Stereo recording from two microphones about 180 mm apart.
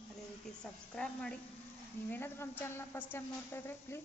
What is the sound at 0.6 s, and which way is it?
A woman's voice, 5° left (ahead or behind).